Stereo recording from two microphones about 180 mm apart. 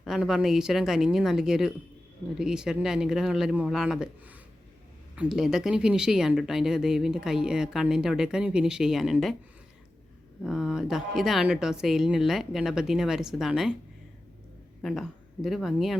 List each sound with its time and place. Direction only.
0.0 s speech: centre (ahead or behind)
10.4 s speech: centre (ahead or behind)
14.8 s a woman's voice: centre (ahead or behind)